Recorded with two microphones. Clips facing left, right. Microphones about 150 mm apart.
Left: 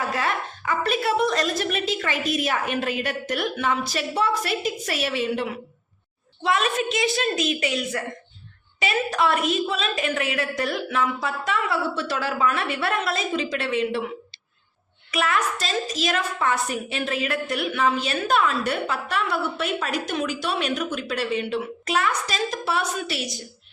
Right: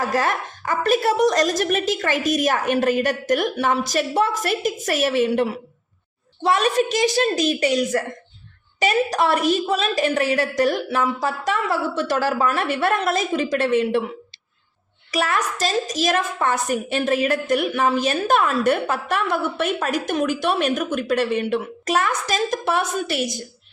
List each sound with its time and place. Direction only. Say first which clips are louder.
0.0 s a woman's voice: right 4 dB; 40° right (ahead or behind)
15.1 s a woman's voice: right 1 dB; 40° right (ahead or behind)